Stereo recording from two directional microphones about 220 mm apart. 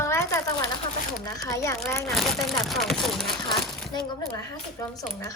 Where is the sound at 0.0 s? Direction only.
10° left (ahead or behind).